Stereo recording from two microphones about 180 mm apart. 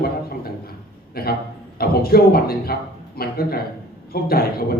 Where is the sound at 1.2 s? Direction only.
55° left (ahead or behind).